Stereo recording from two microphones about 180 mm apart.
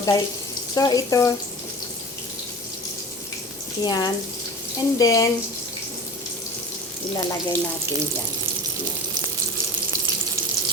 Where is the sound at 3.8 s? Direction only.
20° left (ahead or behind).